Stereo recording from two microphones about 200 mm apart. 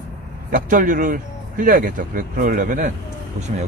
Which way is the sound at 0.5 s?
40° right (ahead or behind).